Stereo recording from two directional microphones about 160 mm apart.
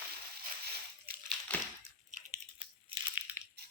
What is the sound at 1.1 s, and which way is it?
Crushing, 70° right (ahead or behind).